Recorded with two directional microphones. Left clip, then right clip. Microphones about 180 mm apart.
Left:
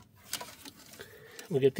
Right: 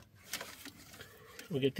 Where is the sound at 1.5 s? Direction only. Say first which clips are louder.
Left 7 dB; 35° left (ahead or behind).